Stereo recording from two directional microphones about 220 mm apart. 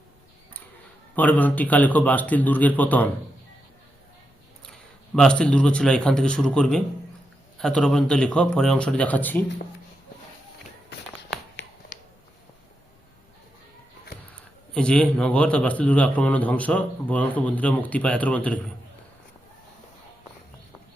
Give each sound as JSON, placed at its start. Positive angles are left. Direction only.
{"t": 1.1, "sound": "a man's voice", "side_deg": 5}
{"t": 5.1, "sound": "speech", "side_deg": 5}
{"t": 14.3, "sound": "a man's voice", "side_deg": 5}